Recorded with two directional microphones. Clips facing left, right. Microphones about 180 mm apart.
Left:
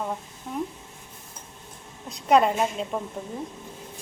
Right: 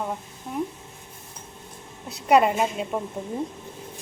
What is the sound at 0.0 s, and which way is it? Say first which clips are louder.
Speech: right 1 dB; 5° right (ahead or behind).